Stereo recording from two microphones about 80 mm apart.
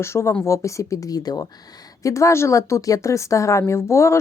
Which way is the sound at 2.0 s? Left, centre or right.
Left.